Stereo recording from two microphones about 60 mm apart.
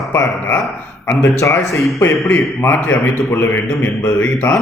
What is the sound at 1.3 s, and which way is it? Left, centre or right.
Speech, left.